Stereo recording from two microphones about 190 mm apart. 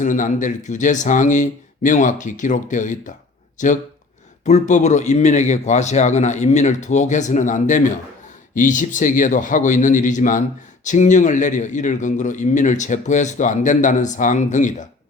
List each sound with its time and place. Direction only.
0.0 s a man's voice: 40° left (ahead or behind)